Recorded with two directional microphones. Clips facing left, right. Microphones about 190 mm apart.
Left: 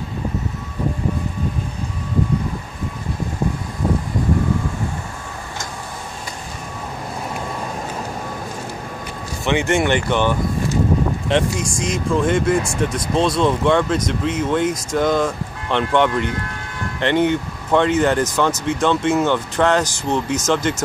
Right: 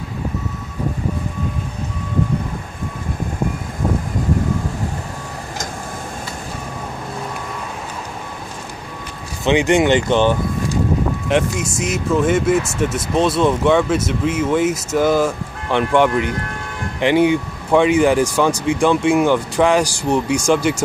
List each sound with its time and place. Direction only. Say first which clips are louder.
9.4 s speech: right 4 dB; 15° right (ahead or behind)
11.2 s speech: right 2 dB; 5° right (ahead or behind)